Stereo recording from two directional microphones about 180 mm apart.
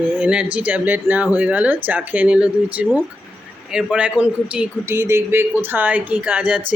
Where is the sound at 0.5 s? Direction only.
10° right (ahead or behind).